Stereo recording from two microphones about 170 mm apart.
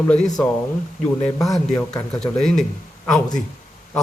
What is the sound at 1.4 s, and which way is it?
Speech, centre (ahead or behind).